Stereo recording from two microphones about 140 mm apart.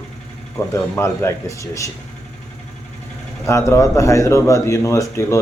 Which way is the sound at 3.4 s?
20° left (ahead or behind).